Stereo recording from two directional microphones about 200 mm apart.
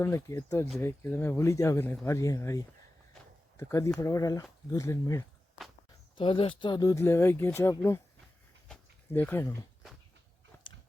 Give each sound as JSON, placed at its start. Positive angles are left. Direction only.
{"t": 0.0, "sound": "speech", "side_deg": 15}
{"t": 3.6, "sound": "speech", "side_deg": 15}
{"t": 6.1, "sound": "speech", "side_deg": 25}
{"t": 8.6, "sound": "a sound", "side_deg": 5}
{"t": 10.7, "sound": "biting", "side_deg": 25}